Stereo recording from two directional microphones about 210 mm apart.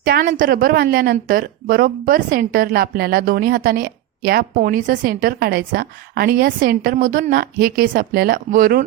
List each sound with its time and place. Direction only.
0.0 s a woman's voice: 45° right (ahead or behind)